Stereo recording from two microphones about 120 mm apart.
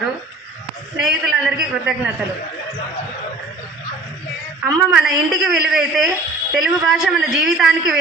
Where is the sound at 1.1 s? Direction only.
5° right (ahead or behind).